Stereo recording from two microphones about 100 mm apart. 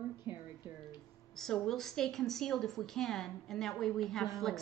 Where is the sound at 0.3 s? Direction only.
70° left (ahead or behind).